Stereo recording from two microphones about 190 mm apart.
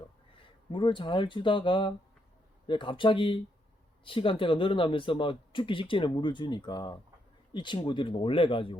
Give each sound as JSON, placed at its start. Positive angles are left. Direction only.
{"t": 0.7, "sound": "speech", "side_deg": 25}